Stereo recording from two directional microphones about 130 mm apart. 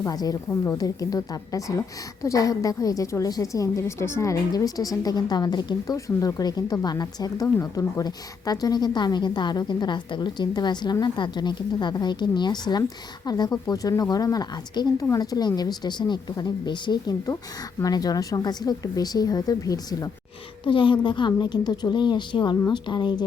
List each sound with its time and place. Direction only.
0.0 s a woman's voice: 30° left (ahead or behind)
20.7 s a woman's voice: 40° left (ahead or behind)